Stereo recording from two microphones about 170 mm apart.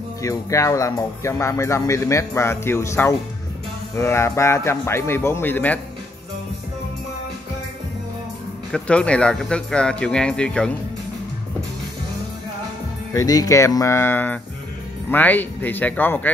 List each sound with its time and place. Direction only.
0.2 s speech: 20° left (ahead or behind)
8.7 s speech: 5° left (ahead or behind)
13.1 s speech: 20° left (ahead or behind)